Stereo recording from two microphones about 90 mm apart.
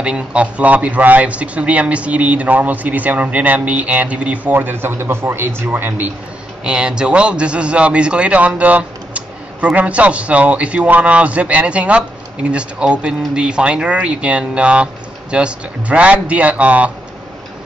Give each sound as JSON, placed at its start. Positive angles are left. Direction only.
{"t": 0.0, "sound": "a man's voice", "side_deg": -10}
{"t": 6.6, "sound": "a man's voice", "side_deg": -10}